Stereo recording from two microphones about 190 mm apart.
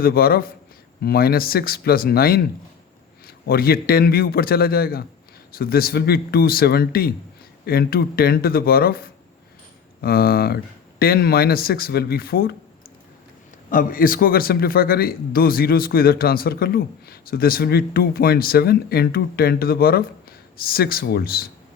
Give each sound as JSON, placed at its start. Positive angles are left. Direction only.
{"t": 0.0, "sound": "a man's voice", "side_deg": 50}
{"t": 13.7, "sound": "a man's voice", "side_deg": 45}